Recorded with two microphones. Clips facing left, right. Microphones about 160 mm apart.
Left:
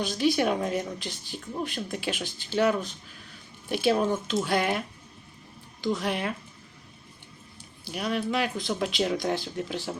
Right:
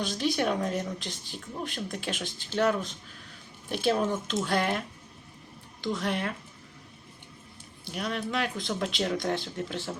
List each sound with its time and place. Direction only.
0.0 s speech: 5° left (ahead or behind)
5.8 s speech: 5° left (ahead or behind)
7.9 s speech: 5° left (ahead or behind)